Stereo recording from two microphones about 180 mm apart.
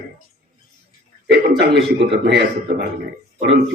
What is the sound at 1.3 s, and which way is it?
Speech, 65° right (ahead or behind).